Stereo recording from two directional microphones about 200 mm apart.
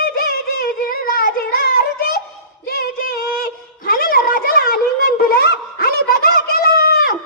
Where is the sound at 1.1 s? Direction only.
50° left (ahead or behind).